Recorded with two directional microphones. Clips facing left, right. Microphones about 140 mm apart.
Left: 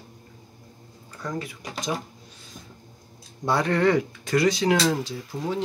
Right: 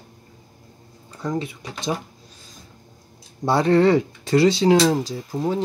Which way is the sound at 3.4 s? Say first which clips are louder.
Right 5 dB; 30° right (ahead or behind).